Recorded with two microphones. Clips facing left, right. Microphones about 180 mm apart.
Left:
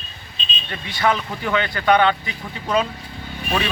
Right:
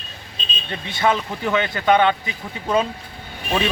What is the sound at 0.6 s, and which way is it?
Speech, 20° right (ahead or behind).